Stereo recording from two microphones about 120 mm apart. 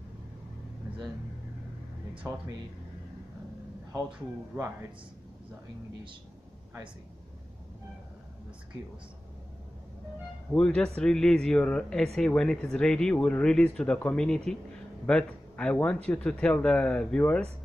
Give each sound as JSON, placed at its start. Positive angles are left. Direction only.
{"t": 2.3, "sound": "speech", "side_deg": -25}
{"t": 4.5, "sound": "a man's voice", "side_deg": -10}
{"t": 10.5, "sound": "speech", "side_deg": 5}